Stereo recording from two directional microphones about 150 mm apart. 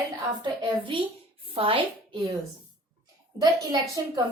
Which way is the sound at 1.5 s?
35° right (ahead or behind).